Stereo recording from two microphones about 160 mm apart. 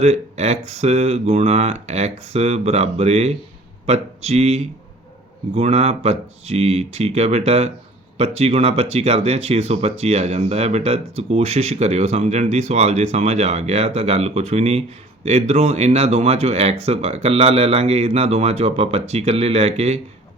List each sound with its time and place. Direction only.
0.0 s speech: 45° right (ahead or behind)